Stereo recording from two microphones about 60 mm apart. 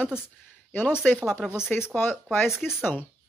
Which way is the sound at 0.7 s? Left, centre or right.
Left.